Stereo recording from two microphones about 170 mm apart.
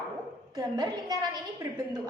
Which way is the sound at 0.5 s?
20° right (ahead or behind).